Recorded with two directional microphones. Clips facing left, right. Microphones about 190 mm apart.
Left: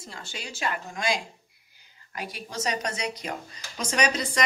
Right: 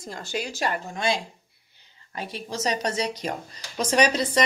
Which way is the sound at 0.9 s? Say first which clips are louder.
Right 3 dB; 30° right (ahead or behind).